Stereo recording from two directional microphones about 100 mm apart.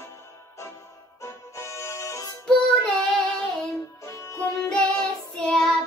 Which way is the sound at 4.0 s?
30° left (ahead or behind).